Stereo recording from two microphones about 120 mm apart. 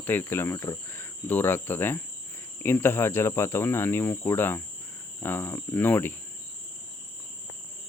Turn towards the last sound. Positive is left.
turn(degrees=15)  # may be behind; listen again after turning